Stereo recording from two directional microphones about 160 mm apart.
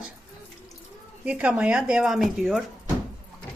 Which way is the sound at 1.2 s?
10° right (ahead or behind).